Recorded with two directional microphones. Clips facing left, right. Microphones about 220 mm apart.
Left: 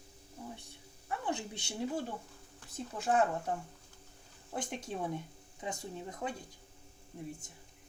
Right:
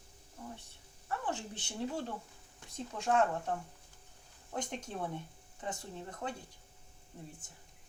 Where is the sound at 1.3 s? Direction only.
10° left (ahead or behind).